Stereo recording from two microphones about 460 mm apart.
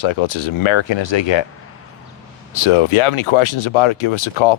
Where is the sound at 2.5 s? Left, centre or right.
Left.